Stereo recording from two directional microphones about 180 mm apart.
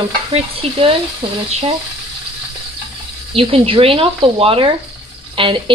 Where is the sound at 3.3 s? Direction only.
30° right (ahead or behind).